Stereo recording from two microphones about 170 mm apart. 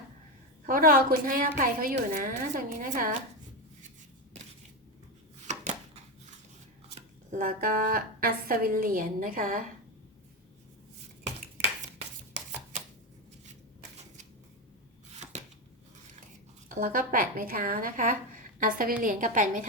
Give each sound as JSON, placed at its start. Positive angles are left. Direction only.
{"t": 0.7, "sound": "a woman's voice", "side_deg": -55}
{"t": 5.5, "sound": "chopping", "side_deg": -45}
{"t": 6.8, "sound": "speech", "side_deg": -50}
{"t": 15.3, "sound": "shuffling cards", "side_deg": -40}
{"t": 16.6, "sound": "a woman's voice", "side_deg": -55}